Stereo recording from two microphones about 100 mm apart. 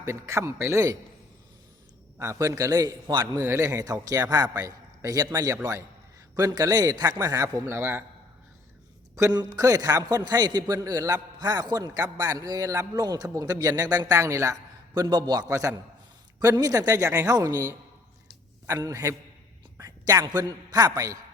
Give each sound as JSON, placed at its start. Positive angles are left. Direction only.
{"t": 0.0, "sound": "a man's voice", "side_deg": -25}
{"t": 2.1, "sound": "a man's voice", "side_deg": -30}
{"t": 3.4, "sound": "a man's voice", "side_deg": -30}
{"t": 9.6, "sound": "a man's voice", "side_deg": -35}
{"t": 18.8, "sound": "a man's voice", "side_deg": -35}